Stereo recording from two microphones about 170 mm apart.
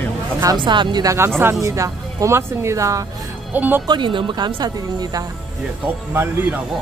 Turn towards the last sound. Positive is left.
turn(degrees=-15)  # may be behind; listen again after turning